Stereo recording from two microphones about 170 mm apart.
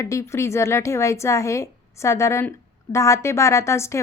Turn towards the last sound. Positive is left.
turn(degrees=15)  # may be behind; listen again after turning